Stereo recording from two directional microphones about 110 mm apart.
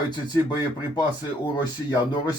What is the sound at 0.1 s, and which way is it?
Speech, 40° left (ahead or behind).